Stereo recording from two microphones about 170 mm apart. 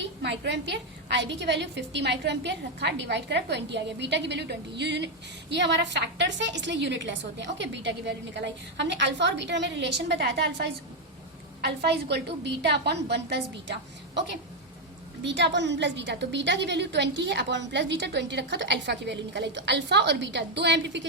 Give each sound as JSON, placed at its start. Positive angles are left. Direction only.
{"t": 0.0, "sound": "a woman's voice", "side_deg": -90}
{"t": 15.2, "sound": "a woman's voice", "side_deg": -90}